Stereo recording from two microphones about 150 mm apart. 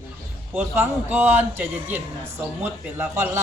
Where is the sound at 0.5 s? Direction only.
10° right (ahead or behind).